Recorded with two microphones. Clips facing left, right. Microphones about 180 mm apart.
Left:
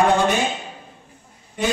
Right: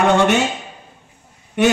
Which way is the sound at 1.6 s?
75° right (ahead or behind).